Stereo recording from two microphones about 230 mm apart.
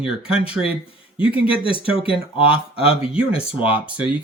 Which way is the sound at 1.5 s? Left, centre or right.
Left.